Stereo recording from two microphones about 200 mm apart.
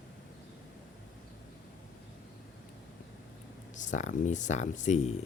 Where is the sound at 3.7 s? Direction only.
40° left (ahead or behind).